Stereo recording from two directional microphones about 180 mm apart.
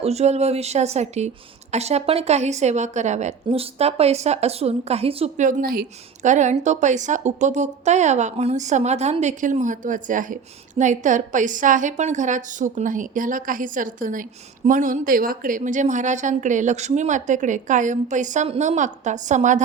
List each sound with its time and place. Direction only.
0.0 s a woman's voice: 35° right (ahead or behind)